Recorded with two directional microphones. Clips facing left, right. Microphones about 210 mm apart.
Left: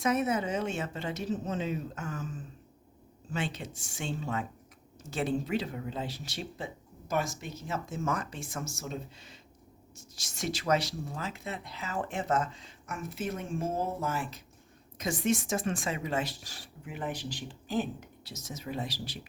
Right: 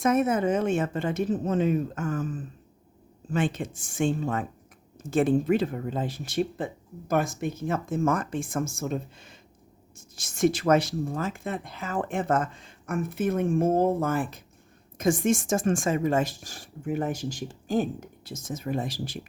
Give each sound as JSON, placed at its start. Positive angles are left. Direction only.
{"t": 0.0, "sound": "speech", "side_deg": -50}